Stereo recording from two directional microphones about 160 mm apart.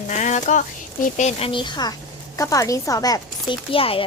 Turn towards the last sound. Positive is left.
turn(degrees=35)  # may be behind; listen again after turning